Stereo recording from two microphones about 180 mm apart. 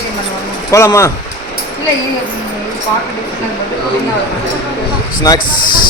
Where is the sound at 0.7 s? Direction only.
15° left (ahead or behind).